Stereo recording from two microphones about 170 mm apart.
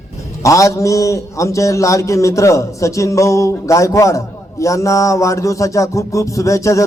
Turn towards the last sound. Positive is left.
turn(degrees=20)  # may be behind; listen again after turning